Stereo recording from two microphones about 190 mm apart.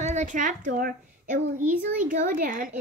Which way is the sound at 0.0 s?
40° right (ahead or behind).